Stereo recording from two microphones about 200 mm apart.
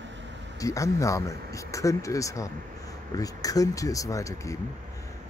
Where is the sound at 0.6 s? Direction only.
15° left (ahead or behind).